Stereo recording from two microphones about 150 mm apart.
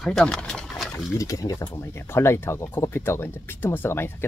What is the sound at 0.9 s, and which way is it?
Speech, 20° left (ahead or behind).